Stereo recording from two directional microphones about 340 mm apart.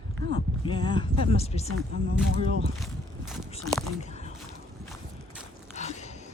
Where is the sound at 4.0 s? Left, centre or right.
Centre.